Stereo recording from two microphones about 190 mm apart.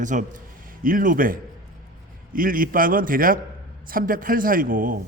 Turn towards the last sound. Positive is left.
turn(degrees=-45)  # may be behind; listen again after turning